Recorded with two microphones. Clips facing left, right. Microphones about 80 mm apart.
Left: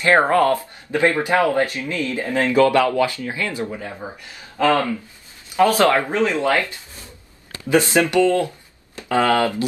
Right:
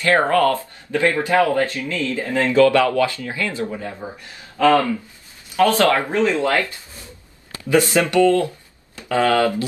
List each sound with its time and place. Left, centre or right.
0.0 s speech: left
7.7 s speech: left